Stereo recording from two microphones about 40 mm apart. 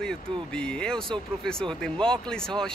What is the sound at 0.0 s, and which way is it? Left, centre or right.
Speech, left.